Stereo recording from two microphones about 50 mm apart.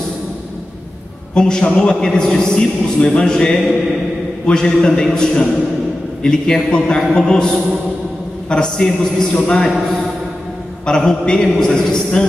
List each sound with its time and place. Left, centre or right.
1.3 s a man's voice: centre
10.9 s a man's voice: centre